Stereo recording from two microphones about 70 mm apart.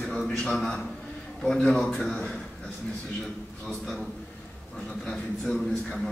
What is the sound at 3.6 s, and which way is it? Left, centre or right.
Speech, centre.